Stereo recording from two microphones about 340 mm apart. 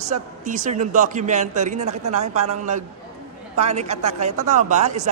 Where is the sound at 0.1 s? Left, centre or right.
Right.